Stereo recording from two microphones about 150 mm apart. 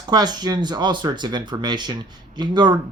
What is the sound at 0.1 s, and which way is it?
Speech, 25° right (ahead or behind).